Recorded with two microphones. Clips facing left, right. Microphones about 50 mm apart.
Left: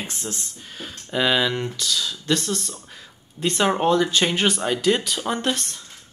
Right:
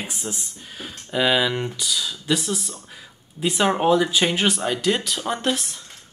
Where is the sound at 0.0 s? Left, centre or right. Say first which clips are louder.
Even; centre.